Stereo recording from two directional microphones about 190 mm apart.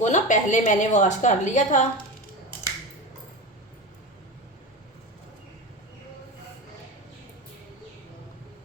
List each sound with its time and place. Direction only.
0.0 s a woman's voice: 40° left (ahead or behind)